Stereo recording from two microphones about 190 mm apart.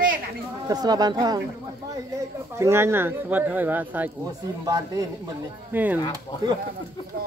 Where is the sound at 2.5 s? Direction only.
15° right (ahead or behind).